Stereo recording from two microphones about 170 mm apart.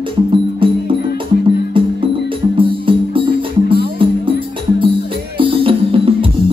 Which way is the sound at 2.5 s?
30° right (ahead or behind).